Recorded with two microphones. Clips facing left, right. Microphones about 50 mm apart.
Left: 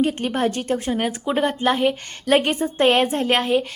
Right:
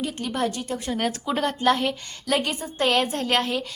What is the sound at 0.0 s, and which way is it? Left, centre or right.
Speech, left.